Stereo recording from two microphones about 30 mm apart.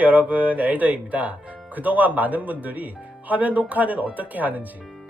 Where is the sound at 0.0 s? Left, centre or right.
Right.